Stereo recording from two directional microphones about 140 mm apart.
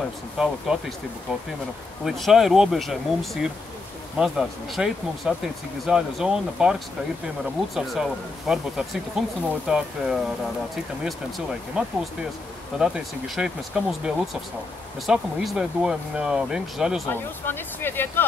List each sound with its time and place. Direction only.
0.4 s speech: 5° right (ahead or behind)
2.0 s speech: centre (ahead or behind)
17.0 s speech: 15° left (ahead or behind)